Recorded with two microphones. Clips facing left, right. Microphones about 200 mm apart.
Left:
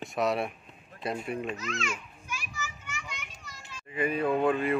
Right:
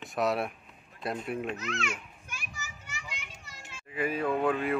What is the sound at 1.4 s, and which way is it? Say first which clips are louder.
Children playing: even; 60° right (ahead or behind).